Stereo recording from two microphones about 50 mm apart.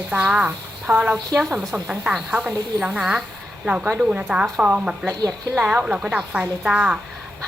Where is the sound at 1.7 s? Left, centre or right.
Right.